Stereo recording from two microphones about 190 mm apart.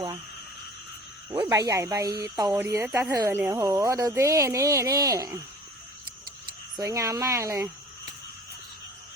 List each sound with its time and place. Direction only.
1.3 s speech: 20° right (ahead or behind)
6.7 s speech: 15° right (ahead or behind)